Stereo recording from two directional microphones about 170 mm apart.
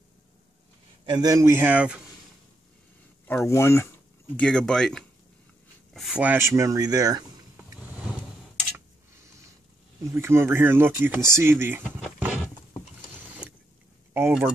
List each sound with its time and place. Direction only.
1.0 s speech: 25° right (ahead or behind)
3.4 s speech: 15° left (ahead or behind)
4.4 s speech: 5° left (ahead or behind); by 7.2 s 20° right (ahead or behind)
8.7 s tick-tock: 15° right (ahead or behind)
10.0 s speech: 15° right (ahead or behind)
12.0 s a sound: 5° right (ahead or behind)
14.1 s speech: 10° right (ahead or behind)